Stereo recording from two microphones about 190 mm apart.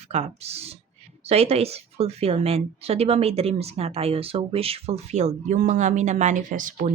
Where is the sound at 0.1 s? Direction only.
35° right (ahead or behind).